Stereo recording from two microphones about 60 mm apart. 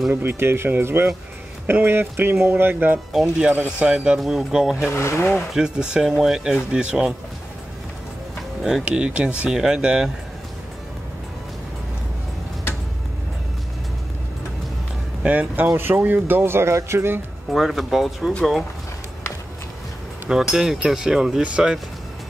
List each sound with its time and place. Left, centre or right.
0.1 s speech: right
3.1 s speech: centre
3.4 s speech: centre
4.9 s speech: left
5.5 s speech: centre
8.8 s speech: centre
15.2 s speech: right
17.5 s speech: centre
20.2 s speech: centre